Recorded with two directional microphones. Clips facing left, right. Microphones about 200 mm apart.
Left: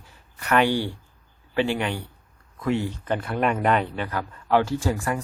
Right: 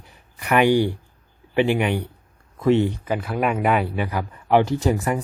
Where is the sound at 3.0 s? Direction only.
Centre (ahead or behind).